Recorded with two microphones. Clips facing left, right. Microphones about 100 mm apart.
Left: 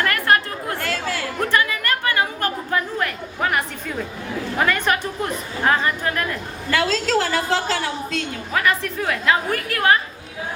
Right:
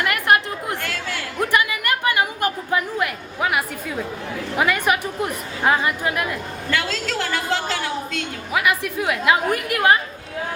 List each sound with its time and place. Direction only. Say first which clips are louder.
0.0 s chatter: even; 15° right (ahead or behind)
1.4 s a sound: right 1 dB; 15° right (ahead or behind)
4.5 s a woman's voice: right 1 dB; 10° right (ahead or behind)
6.7 s a woman's voice: left 5 dB; 35° left (ahead or behind)
8.5 s a woman's voice: even; 10° right (ahead or behind)